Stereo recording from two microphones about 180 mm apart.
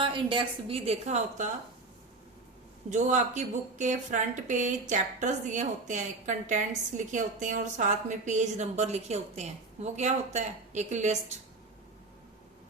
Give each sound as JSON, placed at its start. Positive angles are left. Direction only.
{"t": 0.0, "sound": "speech", "side_deg": -25}
{"t": 2.9, "sound": "speech", "side_deg": -40}